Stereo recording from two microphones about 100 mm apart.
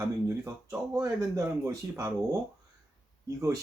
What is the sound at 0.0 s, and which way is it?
Speech, 30° right (ahead or behind).